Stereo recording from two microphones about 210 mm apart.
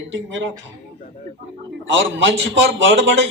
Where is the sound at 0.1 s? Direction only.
65° right (ahead or behind).